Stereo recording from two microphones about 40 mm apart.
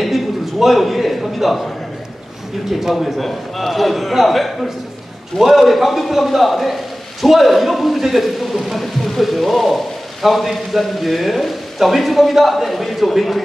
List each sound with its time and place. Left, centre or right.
0.0 s a man's voice: centre
2.8 s a man's voice: centre